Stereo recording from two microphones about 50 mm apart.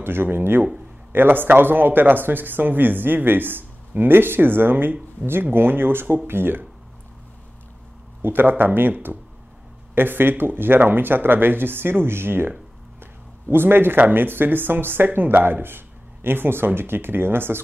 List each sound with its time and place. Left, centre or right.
0.0 s speech: right
8.2 s speech: right
9.9 s speech: right